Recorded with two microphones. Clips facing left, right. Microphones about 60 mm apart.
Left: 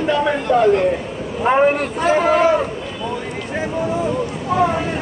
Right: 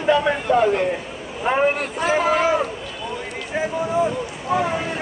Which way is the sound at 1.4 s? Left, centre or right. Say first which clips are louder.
Left 4 dB; centre.